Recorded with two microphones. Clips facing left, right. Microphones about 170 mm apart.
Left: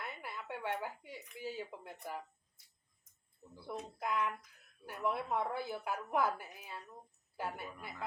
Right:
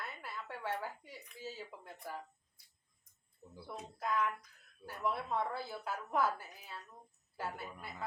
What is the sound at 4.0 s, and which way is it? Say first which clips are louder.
A woman's voice: right 2 dB; 15° left (ahead or behind).